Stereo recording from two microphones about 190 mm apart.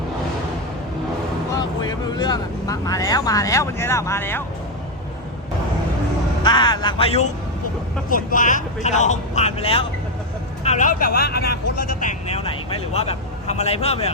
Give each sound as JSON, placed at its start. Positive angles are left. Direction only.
{"t": 1.5, "sound": "speech", "side_deg": 20}
{"t": 6.4, "sound": "speech", "side_deg": 25}
{"t": 8.1, "sound": "speech", "side_deg": 45}
{"t": 12.4, "sound": "speech", "side_deg": 30}